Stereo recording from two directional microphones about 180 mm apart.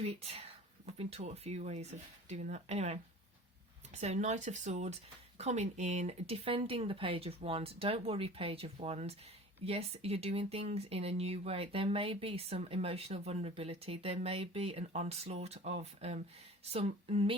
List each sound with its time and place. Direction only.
0.0 s speech: 35° right (ahead or behind)